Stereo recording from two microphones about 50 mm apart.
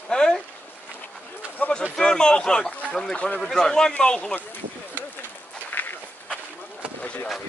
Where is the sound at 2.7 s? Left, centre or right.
Left.